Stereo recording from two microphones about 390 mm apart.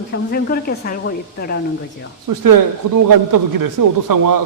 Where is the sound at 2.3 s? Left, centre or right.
Right.